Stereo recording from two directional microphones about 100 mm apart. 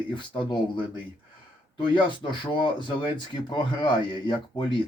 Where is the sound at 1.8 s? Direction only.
55° left (ahead or behind).